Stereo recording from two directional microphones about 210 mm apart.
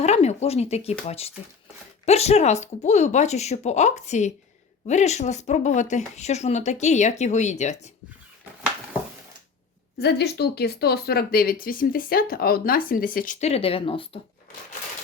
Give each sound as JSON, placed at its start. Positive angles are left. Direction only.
{"t": 0.0, "sound": "speech", "side_deg": 30}
{"t": 10.0, "sound": "speech", "side_deg": 50}